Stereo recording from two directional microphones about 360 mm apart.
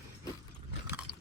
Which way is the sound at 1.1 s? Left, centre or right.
Left.